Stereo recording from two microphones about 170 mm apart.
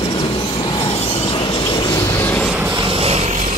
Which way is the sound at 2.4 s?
5° right (ahead or behind).